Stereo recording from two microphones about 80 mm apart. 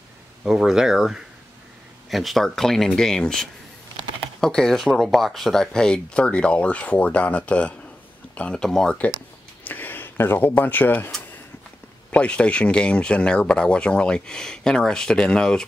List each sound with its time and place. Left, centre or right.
0.4 s speech: centre
9.7 s speech: left
12.1 s speech: centre